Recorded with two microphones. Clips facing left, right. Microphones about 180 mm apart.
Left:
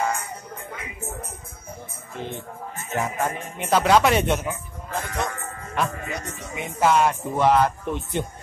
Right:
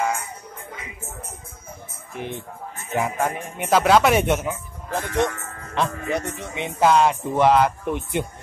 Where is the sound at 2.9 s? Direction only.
15° right (ahead or behind).